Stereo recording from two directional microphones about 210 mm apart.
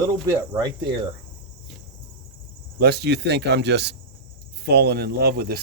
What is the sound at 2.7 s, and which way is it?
Speech, 50° right (ahead or behind).